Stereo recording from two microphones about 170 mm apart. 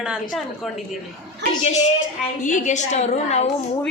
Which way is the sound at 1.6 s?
45° left (ahead or behind).